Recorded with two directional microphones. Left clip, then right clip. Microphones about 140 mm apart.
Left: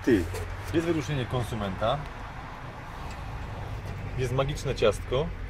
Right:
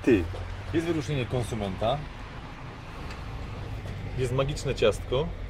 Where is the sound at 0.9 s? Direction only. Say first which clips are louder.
Right 1 dB; 20° left (ahead or behind).